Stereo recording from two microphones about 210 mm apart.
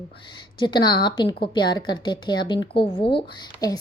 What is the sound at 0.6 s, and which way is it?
A woman's voice, 20° left (ahead or behind).